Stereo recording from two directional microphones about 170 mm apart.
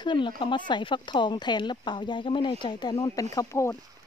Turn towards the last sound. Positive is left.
turn(degrees=15)  # may be behind; listen again after turning